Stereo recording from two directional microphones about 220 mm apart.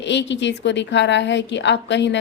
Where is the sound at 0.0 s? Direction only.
55° left (ahead or behind).